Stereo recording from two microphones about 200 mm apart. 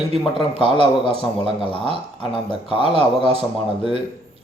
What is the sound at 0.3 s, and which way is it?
Speech, 25° left (ahead or behind).